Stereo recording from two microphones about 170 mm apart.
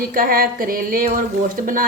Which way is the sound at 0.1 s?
55° right (ahead or behind).